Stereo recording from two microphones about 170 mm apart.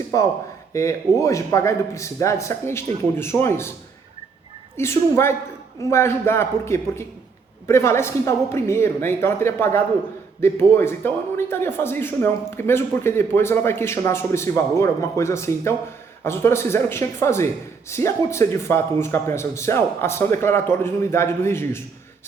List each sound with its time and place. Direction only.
0.7 s a man's voice: 20° left (ahead or behind)
4.8 s a man's voice: 15° left (ahead or behind)